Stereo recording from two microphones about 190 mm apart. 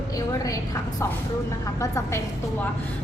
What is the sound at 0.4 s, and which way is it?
A woman's voice, 20° left (ahead or behind).